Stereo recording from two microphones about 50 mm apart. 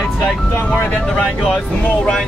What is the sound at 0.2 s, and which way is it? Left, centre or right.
Speech, left.